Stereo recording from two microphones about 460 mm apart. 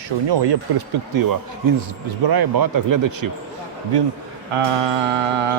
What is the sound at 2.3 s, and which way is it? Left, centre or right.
Speech, right.